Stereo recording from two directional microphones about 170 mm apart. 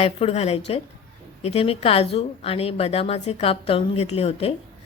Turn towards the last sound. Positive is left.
turn(degrees=35)  # may be behind; listen again after turning